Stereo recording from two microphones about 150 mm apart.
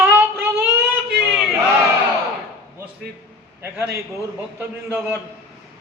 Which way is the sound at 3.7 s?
15° right (ahead or behind).